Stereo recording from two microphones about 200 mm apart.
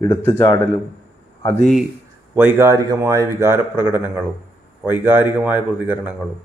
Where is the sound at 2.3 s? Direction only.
10° right (ahead or behind).